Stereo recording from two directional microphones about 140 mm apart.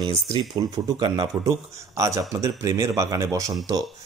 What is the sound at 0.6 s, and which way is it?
Speech, 35° right (ahead or behind).